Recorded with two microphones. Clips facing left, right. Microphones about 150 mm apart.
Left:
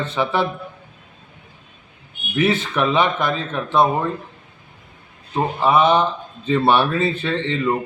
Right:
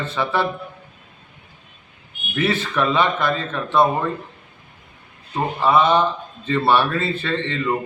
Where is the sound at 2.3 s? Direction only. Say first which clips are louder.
Left 2 dB; 15° left (ahead or behind).